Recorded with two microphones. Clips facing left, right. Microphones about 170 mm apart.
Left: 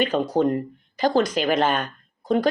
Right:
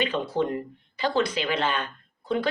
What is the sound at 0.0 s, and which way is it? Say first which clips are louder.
Speech: left 5 dB; 45° left (ahead or behind).